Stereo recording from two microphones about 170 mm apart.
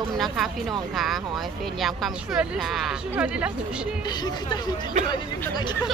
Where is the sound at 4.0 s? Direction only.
25° left (ahead or behind).